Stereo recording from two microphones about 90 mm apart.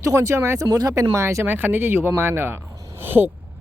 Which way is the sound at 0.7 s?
40° right (ahead or behind).